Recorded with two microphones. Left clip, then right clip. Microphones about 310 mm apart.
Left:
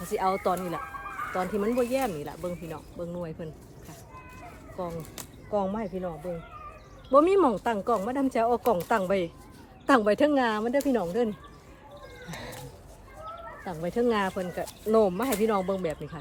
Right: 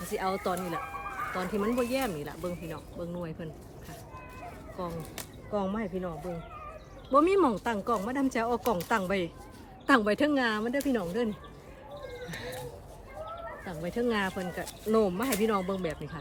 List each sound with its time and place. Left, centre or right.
0.1 s speech: centre
4.8 s speech: centre
12.3 s speech: centre
13.7 s speech: centre